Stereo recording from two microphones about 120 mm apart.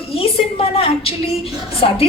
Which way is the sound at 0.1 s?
50° left (ahead or behind).